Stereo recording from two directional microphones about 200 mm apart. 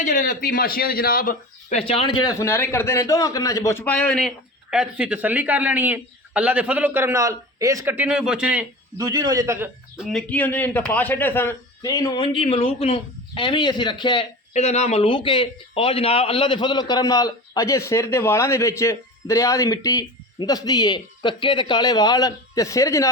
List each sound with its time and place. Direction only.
0.0 s a man's voice: 40° left (ahead or behind)
1.8 s a man's voice: 25° left (ahead or behind)
2.2 s a man's voice: 15° left (ahead or behind); by 8.6 s 5° right (ahead or behind)
9.0 s a man's voice: 20° right (ahead or behind)
10.0 s a man's voice: 5° left (ahead or behind)